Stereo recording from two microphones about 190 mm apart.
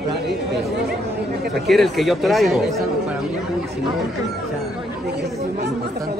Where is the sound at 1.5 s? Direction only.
Centre (ahead or behind).